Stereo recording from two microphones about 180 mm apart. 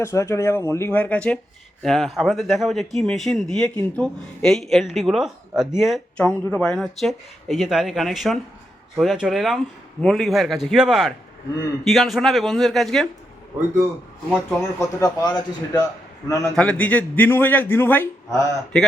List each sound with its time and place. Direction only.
0.0 s a man's voice: 15° left (ahead or behind)
14.8 s speech: 20° left (ahead or behind)
16.4 s a man's voice: 5° left (ahead or behind)